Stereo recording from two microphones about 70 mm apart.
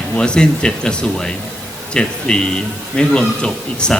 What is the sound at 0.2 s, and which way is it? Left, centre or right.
Speech, centre.